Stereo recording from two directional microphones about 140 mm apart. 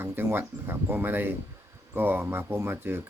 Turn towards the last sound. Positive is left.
turn(degrees=-15)  # may be behind; listen again after turning